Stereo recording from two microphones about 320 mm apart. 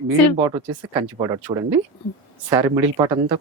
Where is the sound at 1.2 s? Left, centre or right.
Centre.